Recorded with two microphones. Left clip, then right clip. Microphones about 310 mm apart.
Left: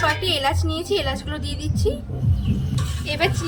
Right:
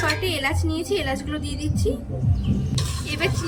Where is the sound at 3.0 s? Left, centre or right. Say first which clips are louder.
Left 4 dB; centre.